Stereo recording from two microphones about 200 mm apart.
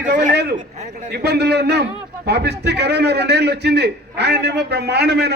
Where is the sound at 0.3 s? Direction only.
55° right (ahead or behind).